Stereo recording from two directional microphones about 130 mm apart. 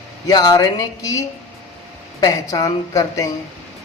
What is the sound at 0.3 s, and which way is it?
Speech, 30° left (ahead or behind).